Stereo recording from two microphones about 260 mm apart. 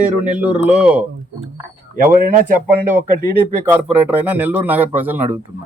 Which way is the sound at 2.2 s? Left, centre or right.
Right.